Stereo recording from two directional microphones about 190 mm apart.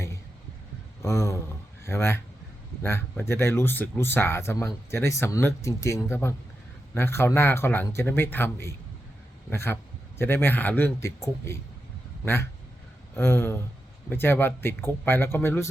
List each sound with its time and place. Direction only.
1.0 s speech: 15° left (ahead or behind)